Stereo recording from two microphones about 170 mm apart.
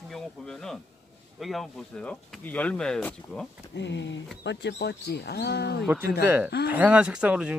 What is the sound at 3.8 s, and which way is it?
Speech, 90° left.